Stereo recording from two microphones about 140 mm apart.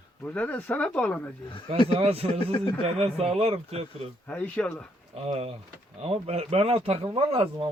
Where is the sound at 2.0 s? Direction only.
45° right (ahead or behind).